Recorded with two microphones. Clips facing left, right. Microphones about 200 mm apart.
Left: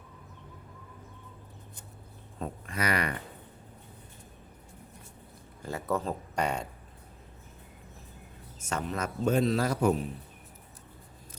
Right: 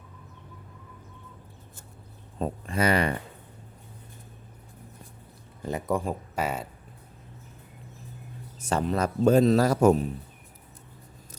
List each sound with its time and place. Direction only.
2.4 s speech: 30° right (ahead or behind)
5.6 s speech: 15° right (ahead or behind)
8.5 s a man's voice: 35° right (ahead or behind)